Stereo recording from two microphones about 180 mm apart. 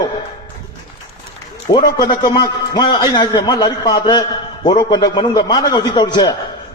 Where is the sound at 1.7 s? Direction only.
25° left (ahead or behind).